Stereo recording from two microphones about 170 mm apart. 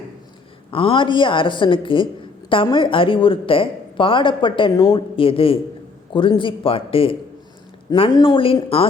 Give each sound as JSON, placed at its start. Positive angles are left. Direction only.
{"t": 0.7, "sound": "a man's voice", "side_deg": 30}